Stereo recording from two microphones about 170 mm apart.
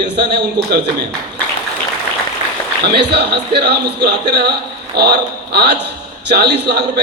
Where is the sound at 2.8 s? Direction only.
70° right (ahead or behind).